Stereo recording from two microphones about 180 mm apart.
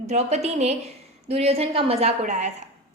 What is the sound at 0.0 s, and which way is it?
A woman's voice, 35° right (ahead or behind).